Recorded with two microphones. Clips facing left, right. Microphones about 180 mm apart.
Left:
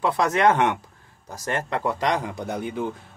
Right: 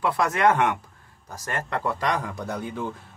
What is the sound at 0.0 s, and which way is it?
Speech, 20° left (ahead or behind).